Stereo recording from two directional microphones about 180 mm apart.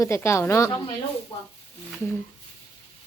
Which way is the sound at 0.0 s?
15° left (ahead or behind).